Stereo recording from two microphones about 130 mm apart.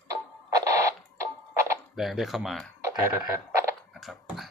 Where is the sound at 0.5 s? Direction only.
25° right (ahead or behind).